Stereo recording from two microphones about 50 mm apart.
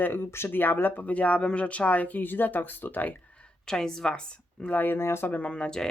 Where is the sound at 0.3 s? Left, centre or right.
Left.